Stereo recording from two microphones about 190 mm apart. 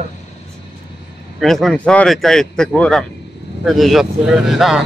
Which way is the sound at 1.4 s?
Centre (ahead or behind).